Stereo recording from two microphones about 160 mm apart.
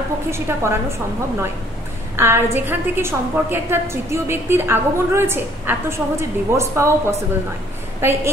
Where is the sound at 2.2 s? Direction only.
15° right (ahead or behind).